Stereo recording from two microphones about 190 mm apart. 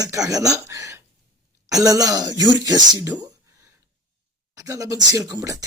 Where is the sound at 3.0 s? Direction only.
15° right (ahead or behind).